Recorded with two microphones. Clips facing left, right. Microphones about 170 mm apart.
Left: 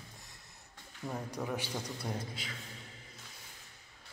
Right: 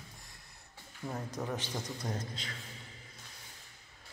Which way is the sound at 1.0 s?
Centre (ahead or behind).